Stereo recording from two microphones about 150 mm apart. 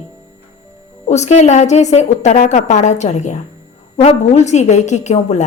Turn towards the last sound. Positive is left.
turn(degrees=50)  # may be behind; listen again after turning